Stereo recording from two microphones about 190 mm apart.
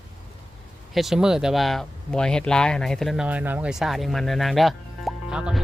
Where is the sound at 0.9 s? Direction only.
5° right (ahead or behind).